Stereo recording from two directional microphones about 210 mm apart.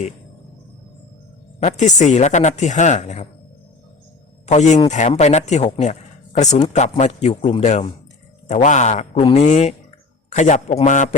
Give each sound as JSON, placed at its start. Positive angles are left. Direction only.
{"t": 1.5, "sound": "speech", "side_deg": 35}
{"t": 4.4, "sound": "speech", "side_deg": 35}